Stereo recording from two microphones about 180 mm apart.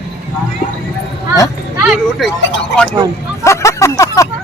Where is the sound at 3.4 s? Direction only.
15° left (ahead or behind).